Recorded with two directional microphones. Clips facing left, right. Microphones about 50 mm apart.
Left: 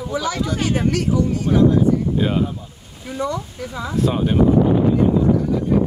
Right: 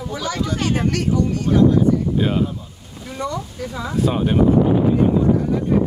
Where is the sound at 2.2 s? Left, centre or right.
Centre.